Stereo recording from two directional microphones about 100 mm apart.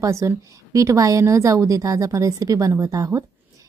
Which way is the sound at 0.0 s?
30° right (ahead or behind).